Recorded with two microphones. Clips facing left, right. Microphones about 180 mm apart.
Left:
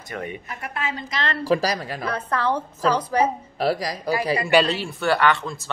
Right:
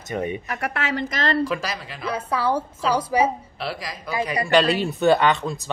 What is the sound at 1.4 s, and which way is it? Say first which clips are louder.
Speech: left 4 dB; 35° left (ahead or behind).